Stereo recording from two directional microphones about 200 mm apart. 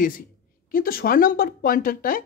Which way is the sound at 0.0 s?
45° left (ahead or behind).